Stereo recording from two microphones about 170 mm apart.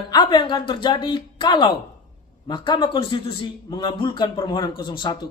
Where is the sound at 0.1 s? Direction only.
25° left (ahead or behind).